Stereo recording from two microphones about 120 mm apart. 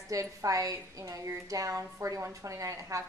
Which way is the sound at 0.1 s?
30° right (ahead or behind).